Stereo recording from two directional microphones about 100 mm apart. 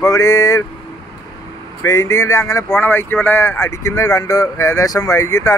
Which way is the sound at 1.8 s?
30° left (ahead or behind).